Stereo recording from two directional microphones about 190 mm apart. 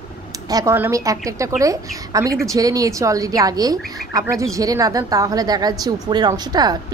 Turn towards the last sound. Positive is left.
turn(degrees=-20)  # may be behind; listen again after turning